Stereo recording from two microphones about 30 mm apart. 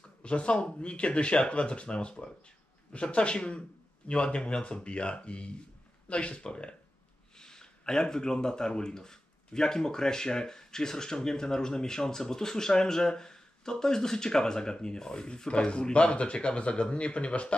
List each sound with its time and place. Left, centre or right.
0.2 s a man's voice: left
7.3 s speech: left